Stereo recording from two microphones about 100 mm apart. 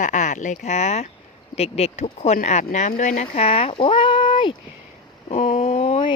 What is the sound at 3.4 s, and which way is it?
Speech, 80° left.